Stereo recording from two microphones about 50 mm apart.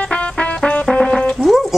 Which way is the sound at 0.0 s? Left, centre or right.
Left.